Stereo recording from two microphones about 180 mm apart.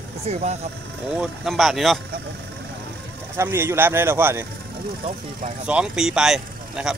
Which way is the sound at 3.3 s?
15° right (ahead or behind).